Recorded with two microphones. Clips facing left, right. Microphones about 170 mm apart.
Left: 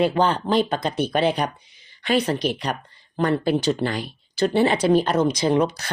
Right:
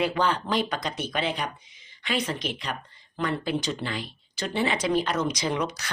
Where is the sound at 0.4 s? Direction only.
30° left (ahead or behind).